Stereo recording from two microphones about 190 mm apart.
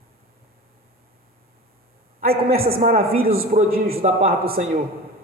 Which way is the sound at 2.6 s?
50° right (ahead or behind).